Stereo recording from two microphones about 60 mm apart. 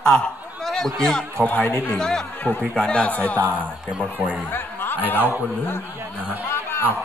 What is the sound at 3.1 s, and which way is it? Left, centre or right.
Speech, left.